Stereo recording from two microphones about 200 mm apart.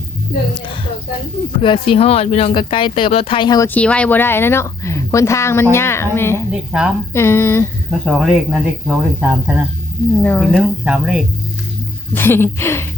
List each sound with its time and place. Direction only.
1.5 s speech: 25° left (ahead or behind)
3.8 s a woman's voice: 5° left (ahead or behind)
6.5 s speech: 5° right (ahead or behind)
7.1 s a woman's voice: 15° left (ahead or behind)
7.9 s speech: centre (ahead or behind)
10.2 s a woman's voice: 10° left (ahead or behind)
10.5 s speech: 5° right (ahead or behind)
12.1 s a woman's voice: 10° left (ahead or behind)